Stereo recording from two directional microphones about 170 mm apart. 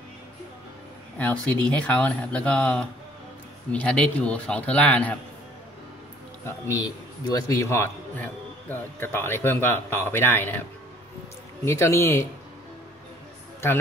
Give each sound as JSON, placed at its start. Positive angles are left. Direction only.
{"t": 1.1, "sound": "a man's voice", "side_deg": 10}
{"t": 6.4, "sound": "a man's voice", "side_deg": 20}
{"t": 11.6, "sound": "a man's voice", "side_deg": 15}